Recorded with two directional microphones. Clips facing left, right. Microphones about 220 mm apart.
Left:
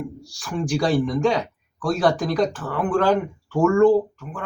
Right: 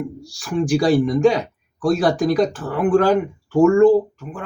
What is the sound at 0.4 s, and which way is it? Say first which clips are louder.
Speech: right 5 dB; 10° right (ahead or behind).